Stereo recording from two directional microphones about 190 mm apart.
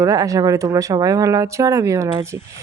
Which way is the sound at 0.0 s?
15° right (ahead or behind).